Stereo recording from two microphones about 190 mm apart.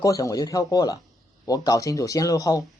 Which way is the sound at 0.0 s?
20° left (ahead or behind).